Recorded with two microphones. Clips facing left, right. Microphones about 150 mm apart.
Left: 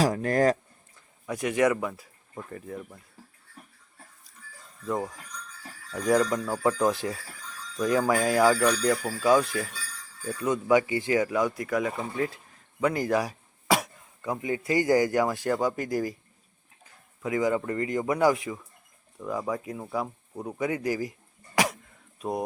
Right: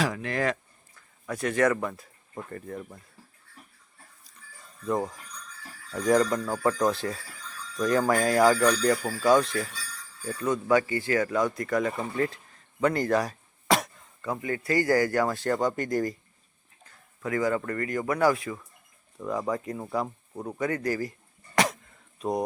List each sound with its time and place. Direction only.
0.0 s speech: 40° left (ahead or behind)
0.9 s speech: 15° left (ahead or behind)
4.9 s speech: centre (ahead or behind); by 18.6 s 15° left (ahead or behind)
19.2 s speech: centre (ahead or behind)
20.6 s a sound: 10° left (ahead or behind)
22.2 s speech: 5° left (ahead or behind)